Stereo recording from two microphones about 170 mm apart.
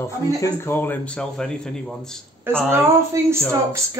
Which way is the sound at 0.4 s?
15° left (ahead or behind).